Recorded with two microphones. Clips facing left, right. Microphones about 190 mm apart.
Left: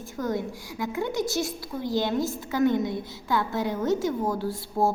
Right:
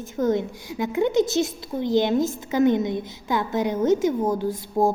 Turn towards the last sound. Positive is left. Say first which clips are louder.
# right 4 dB
turn(degrees=-15)  # may be behind; listen again after turning